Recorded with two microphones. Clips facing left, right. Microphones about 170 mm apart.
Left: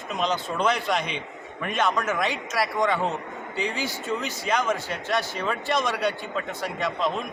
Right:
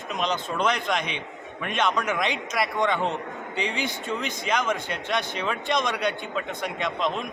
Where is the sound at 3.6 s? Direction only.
60° right (ahead or behind).